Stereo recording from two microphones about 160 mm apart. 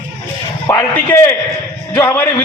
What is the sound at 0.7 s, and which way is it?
A man's voice, 15° left (ahead or behind).